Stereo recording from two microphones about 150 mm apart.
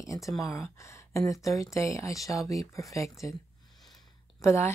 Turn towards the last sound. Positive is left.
turn(degrees=15)  # may be behind; listen again after turning